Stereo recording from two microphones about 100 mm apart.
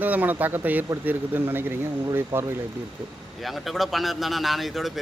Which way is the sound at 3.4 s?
Centre (ahead or behind).